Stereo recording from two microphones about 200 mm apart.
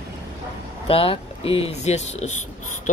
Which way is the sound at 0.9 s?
30° left (ahead or behind).